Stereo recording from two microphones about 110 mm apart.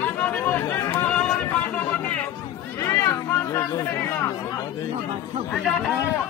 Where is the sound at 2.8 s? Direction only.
25° left (ahead or behind).